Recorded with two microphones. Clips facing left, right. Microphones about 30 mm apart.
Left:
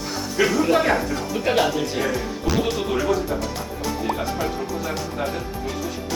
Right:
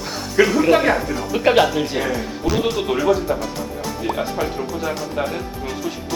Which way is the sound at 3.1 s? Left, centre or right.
Centre.